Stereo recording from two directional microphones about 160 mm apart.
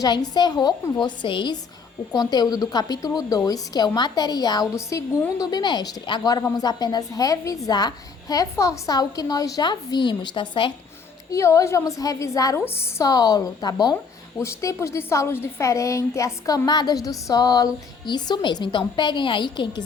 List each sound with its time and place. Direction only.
0.0 s a woman's voice: 25° left (ahead or behind)
11.3 s a woman's voice: 20° left (ahead or behind)